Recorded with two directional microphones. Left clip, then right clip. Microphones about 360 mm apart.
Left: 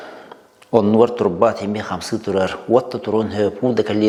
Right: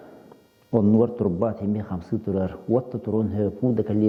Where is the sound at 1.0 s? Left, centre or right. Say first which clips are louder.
Left 9 dB; centre.